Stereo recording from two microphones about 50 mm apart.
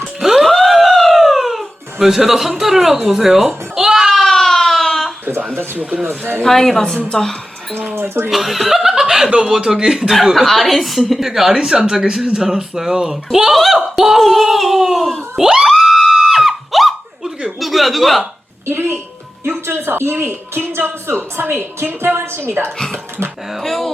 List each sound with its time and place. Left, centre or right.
0.2 s music: centre
3.9 s a sound: centre
6.1 s speech: right
6.4 s a woman's voice: centre
7.1 s music: centre
7.9 s speech: right
8.3 s chuckle: centre
9.3 s a woman's voice: centre
15.8 s screaming: centre
17.6 s speech: centre
18.6 s speech: right
23.6 s a woman's voice: centre